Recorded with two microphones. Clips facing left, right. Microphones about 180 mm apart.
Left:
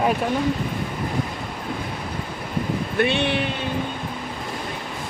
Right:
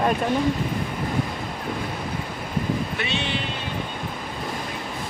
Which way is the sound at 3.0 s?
60° left (ahead or behind).